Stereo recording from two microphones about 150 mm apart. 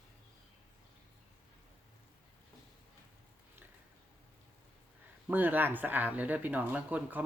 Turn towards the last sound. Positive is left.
turn(degrees=-10)  # may be behind; listen again after turning